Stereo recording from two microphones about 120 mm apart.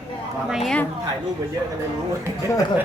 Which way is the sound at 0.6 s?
5° left (ahead or behind).